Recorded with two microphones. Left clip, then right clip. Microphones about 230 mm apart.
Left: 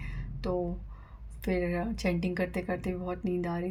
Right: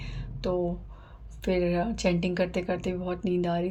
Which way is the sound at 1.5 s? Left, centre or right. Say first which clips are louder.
Right 5 dB; left.